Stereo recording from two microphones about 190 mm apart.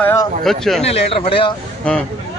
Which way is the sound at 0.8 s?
30° left (ahead or behind).